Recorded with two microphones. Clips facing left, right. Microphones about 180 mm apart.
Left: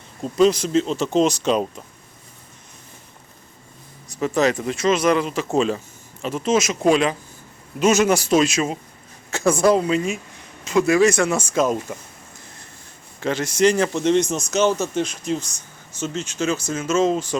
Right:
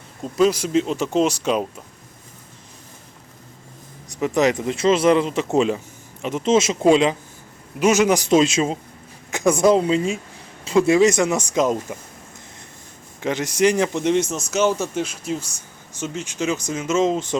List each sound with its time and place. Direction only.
0.3 s speech: 10° right (ahead or behind)
4.1 s speech: 20° right (ahead or behind)
13.1 s speech: 15° right (ahead or behind)